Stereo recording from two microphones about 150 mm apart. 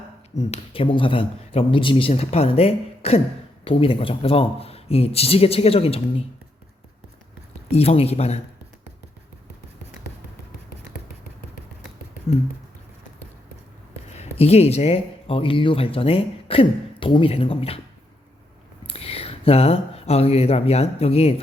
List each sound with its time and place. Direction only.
0.3 s speech: 40° left (ahead or behind)
7.7 s speech: 45° left (ahead or behind)
14.1 s speech: 45° left (ahead or behind)
18.9 s speech: 40° left (ahead or behind)